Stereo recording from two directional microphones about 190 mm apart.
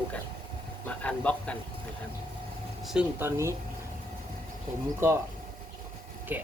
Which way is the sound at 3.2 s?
15° right (ahead or behind).